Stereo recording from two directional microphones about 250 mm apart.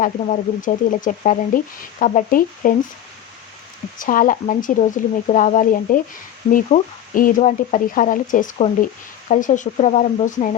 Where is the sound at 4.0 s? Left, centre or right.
Left.